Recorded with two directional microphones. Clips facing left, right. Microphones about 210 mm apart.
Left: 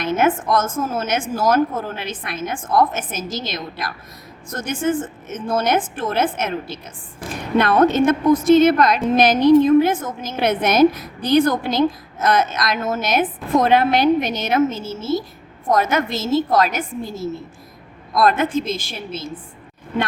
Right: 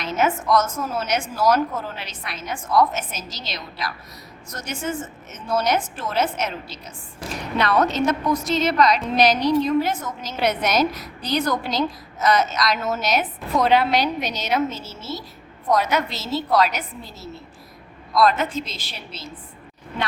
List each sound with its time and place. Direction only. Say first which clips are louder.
0.0 s a woman's voice: left 4 dB; 50° left (ahead or behind)